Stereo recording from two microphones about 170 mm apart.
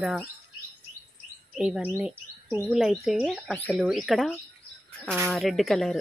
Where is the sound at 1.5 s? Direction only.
5° right (ahead or behind).